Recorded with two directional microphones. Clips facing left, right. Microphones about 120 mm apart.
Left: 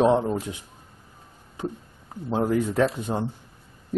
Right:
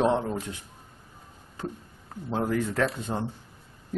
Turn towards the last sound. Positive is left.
turn(degrees=15)  # may be behind; listen again after turning